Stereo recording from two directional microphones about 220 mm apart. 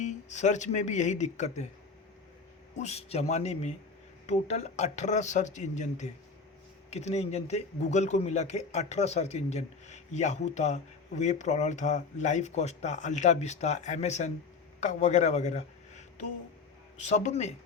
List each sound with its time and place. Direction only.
0.0 s speech: 35° left (ahead or behind)
2.7 s a man's voice: 30° left (ahead or behind)